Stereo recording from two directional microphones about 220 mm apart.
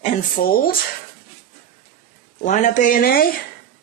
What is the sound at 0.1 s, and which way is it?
Speech, 30° left (ahead or behind).